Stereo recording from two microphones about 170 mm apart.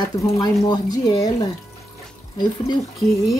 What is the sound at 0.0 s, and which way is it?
A woman's voice, 25° left (ahead or behind).